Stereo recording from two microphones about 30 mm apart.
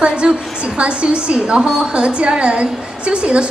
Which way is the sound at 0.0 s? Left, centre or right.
Right.